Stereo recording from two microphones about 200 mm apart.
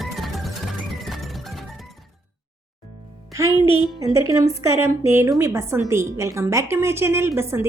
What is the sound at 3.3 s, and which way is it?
A woman's voice, 15° right (ahead or behind).